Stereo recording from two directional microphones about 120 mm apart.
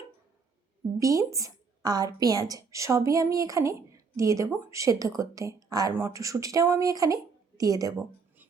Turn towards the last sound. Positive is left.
turn(degrees=-30)  # may be behind; listen again after turning